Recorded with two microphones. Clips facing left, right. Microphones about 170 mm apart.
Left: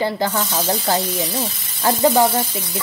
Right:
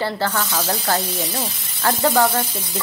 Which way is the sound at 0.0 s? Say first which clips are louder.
Left 2 dB; 15° left (ahead or behind).